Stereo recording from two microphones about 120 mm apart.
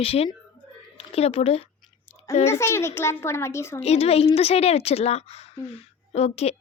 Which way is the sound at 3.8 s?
60° left (ahead or behind).